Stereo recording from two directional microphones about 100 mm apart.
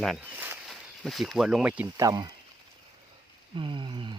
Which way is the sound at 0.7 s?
Centre (ahead or behind).